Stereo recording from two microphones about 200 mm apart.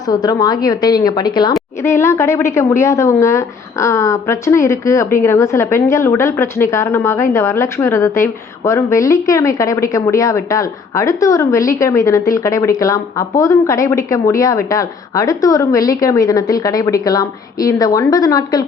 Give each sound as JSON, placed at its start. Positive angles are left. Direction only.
{"t": 0.1, "sound": "a woman's voice", "side_deg": 20}